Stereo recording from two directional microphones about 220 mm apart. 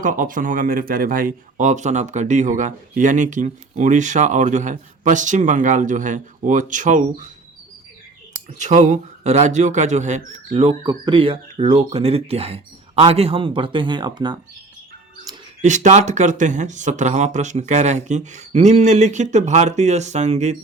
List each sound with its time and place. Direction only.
0.0 s speech: 35° right (ahead or behind)
8.5 s speech: 35° right (ahead or behind)
15.6 s speech: 35° right (ahead or behind)